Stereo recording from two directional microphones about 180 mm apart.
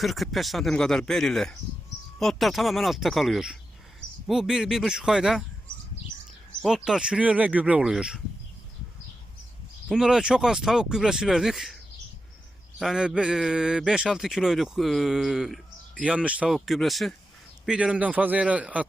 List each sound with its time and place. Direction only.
0.0 s a man's voice: centre (ahead or behind)
6.6 s speech: 5° left (ahead or behind)
6.8 s a man's voice: 5° right (ahead or behind)
9.9 s a man's voice: 5° right (ahead or behind)
12.8 s a man's voice: 5° right (ahead or behind)